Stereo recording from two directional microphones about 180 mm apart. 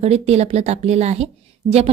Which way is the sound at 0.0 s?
35° right (ahead or behind).